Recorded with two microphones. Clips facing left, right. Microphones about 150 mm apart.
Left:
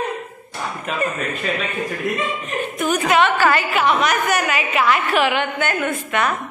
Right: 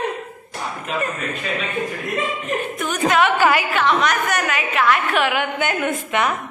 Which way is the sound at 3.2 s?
15° right (ahead or behind).